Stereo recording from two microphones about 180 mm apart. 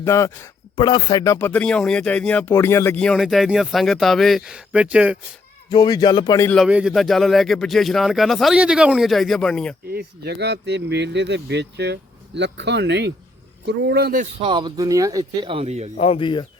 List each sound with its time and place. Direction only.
0.0 s a man's voice: 15° left (ahead or behind)
0.8 s speech: 25° left (ahead or behind); by 5.1 s 5° right (ahead or behind)
5.6 s speech: 20° left (ahead or behind)
6.6 s speech: 5° right (ahead or behind)
10.2 s a man's voice: 65° right (ahead or behind)
14.2 s speech: 30° right (ahead or behind)
16.0 s speech: 30° left (ahead or behind)